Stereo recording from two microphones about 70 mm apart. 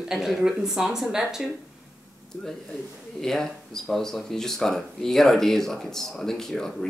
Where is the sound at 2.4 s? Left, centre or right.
Centre.